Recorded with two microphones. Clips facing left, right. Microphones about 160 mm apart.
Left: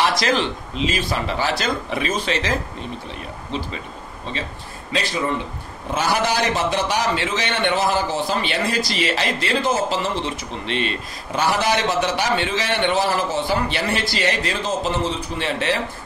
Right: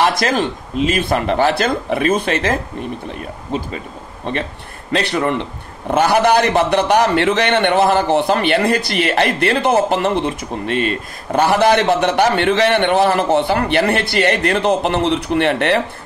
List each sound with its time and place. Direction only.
0.0 s speech: 50° right (ahead or behind)
4.3 s a man's voice: 60° right (ahead or behind)